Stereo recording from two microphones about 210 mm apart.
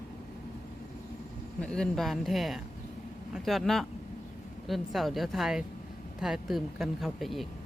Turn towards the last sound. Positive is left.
turn(degrees=0)  # may be behind; listen again after turning